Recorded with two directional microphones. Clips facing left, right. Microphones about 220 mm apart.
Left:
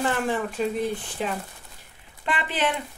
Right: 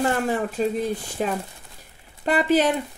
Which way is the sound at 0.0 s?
40° right (ahead or behind).